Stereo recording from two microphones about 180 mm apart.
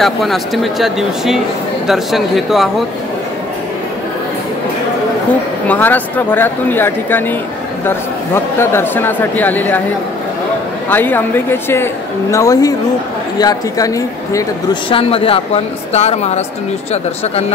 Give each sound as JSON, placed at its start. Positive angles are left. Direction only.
{"t": 0.0, "sound": "speech", "side_deg": 0}
{"t": 5.7, "sound": "a woman's voice", "side_deg": 10}
{"t": 8.5, "sound": "a woman's voice", "side_deg": 10}
{"t": 10.9, "sound": "a woman's voice", "side_deg": 10}
{"t": 14.9, "sound": "a woman's voice", "side_deg": 30}